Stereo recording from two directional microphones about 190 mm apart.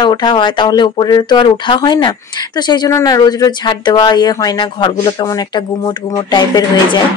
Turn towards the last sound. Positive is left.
turn(degrees=20)  # may be behind; listen again after turning